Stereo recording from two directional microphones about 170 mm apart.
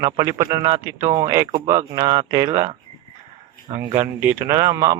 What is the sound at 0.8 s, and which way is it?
Speech, 20° right (ahead or behind).